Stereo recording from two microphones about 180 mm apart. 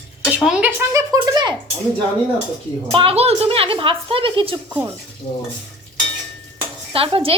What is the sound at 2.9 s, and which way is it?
A woman's voice, 35° right (ahead or behind).